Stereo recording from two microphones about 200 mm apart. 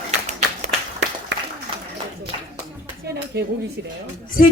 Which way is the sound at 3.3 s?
55° right (ahead or behind).